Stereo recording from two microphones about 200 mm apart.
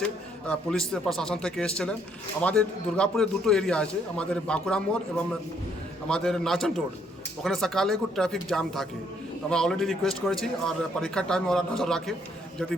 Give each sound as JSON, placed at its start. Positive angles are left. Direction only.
{"t": 0.0, "sound": "a man's voice", "side_deg": 5}